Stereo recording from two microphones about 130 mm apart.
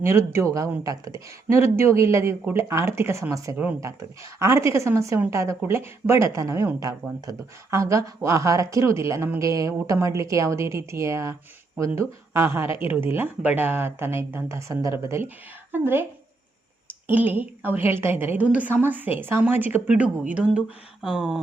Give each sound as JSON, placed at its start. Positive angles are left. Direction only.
{"t": 0.0, "sound": "a woman's voice", "side_deg": -20}
{"t": 17.1, "sound": "a woman's voice", "side_deg": -15}